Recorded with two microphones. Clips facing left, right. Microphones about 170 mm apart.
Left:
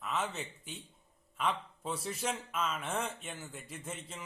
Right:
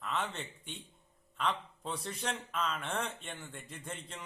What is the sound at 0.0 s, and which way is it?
A man's voice, 5° left (ahead or behind).